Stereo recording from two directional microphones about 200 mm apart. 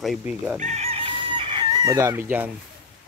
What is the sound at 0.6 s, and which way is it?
Chicken, 35° right (ahead or behind).